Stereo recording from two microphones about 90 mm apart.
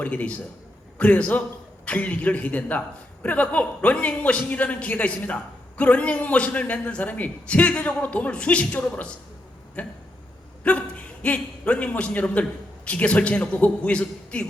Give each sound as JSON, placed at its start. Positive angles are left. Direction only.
{"t": 0.0, "sound": "a man's voice", "side_deg": 15}